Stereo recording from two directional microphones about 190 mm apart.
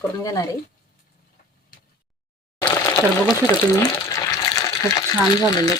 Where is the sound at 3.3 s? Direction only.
20° left (ahead or behind).